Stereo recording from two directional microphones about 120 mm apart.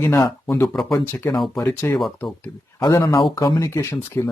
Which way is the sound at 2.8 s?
35° left (ahead or behind).